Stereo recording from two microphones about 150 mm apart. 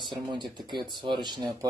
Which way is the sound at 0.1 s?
30° right (ahead or behind).